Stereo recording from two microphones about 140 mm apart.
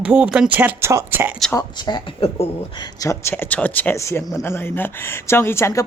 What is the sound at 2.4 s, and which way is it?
Speech, 45° left (ahead or behind).